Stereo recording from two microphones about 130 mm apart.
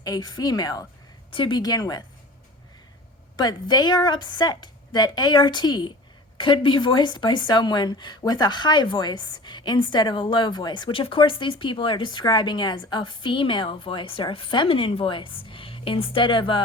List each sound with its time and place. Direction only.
0.0 s a woman's voice: 30° left (ahead or behind)
1.3 s a woman's voice: 40° left (ahead or behind)
3.3 s a woman's voice: 30° left (ahead or behind)